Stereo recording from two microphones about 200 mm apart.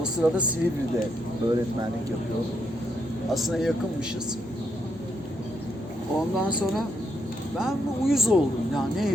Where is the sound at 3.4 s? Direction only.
Centre (ahead or behind).